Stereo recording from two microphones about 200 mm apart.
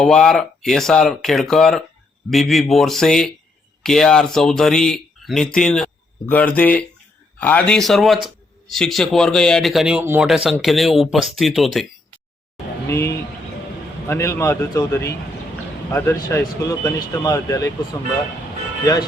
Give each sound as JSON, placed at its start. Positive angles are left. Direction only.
{"t": 0.0, "sound": "speech", "side_deg": 0}
{"t": 12.9, "sound": "speech", "side_deg": 15}